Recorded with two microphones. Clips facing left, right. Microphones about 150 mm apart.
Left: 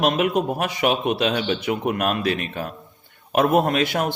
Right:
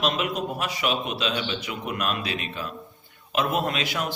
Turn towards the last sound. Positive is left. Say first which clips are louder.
# left 7 dB
turn(degrees=50)  # may be behind; listen again after turning